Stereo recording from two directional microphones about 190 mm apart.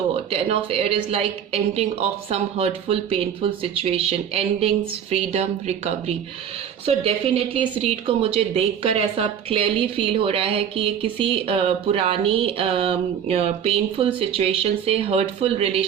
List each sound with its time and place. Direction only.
0.3 s a woman's voice: 30° right (ahead or behind)